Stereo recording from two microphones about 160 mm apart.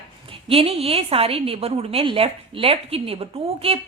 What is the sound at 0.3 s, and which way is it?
A woman's voice, 35° right (ahead or behind).